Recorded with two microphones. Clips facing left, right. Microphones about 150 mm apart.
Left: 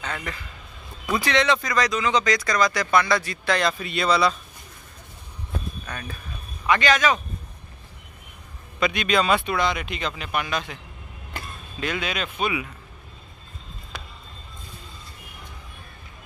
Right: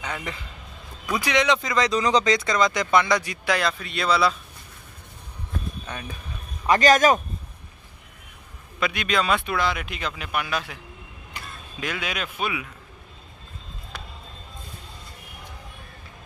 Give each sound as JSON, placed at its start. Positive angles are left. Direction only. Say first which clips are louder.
{"t": 0.0, "sound": "speech", "louder": "even", "side_deg": -15}
{"t": 2.0, "sound": "speech", "louder": "right 2 dB", "side_deg": -35}
{"t": 5.9, "sound": "speech", "louder": "even", "side_deg": -15}
{"t": 6.6, "sound": "speech", "louder": "right 3 dB", "side_deg": -40}
{"t": 8.7, "sound": "speech", "louder": "left 2 dB", "side_deg": -5}
{"t": 11.8, "sound": "speech", "louder": "left 2 dB", "side_deg": -10}